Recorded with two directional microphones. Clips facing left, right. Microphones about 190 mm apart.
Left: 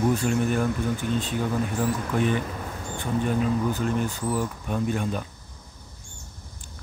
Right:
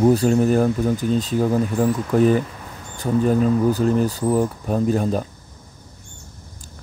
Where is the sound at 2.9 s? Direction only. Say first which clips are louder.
Right 7 dB; 40° right (ahead or behind).